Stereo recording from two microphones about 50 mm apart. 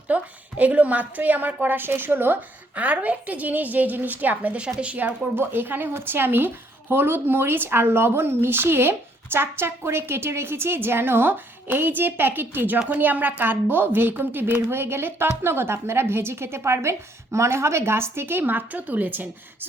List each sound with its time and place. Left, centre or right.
0.1 s a woman's voice: right
2.7 s a woman's voice: right
4.5 s a woman's voice: right
5.4 s a woman's voice: right